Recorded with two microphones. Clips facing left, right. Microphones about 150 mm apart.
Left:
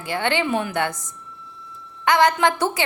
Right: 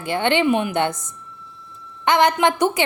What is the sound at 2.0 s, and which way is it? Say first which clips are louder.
Speech: right 1 dB; 20° right (ahead or behind).